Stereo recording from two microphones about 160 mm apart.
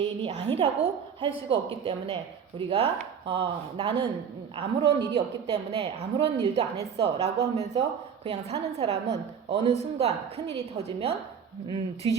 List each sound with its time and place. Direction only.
0.0 s a woman's voice: 35° right (ahead or behind)